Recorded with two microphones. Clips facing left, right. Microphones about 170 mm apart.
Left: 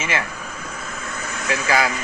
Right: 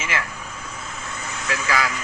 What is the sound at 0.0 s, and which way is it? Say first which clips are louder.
Speech: left 3 dB; 25° left (ahead or behind).